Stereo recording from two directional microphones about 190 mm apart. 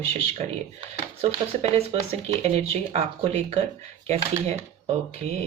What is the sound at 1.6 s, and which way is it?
Speech, 35° right (ahead or behind).